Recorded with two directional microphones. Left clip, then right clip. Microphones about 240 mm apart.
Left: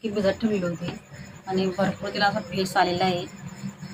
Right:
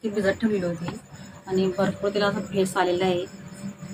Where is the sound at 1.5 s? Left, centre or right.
Centre.